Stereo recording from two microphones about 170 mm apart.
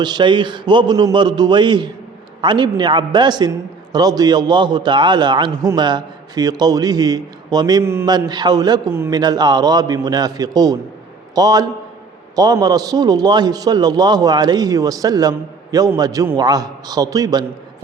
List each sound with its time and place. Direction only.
0.0 s a man's voice: 25° right (ahead or behind)